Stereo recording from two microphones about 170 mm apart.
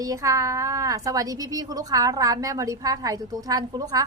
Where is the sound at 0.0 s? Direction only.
20° right (ahead or behind).